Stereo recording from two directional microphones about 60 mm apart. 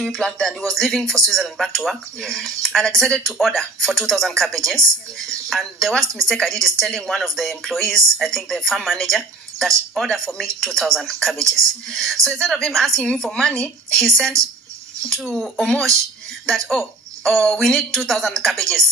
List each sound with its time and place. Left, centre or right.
0.0 s speech: centre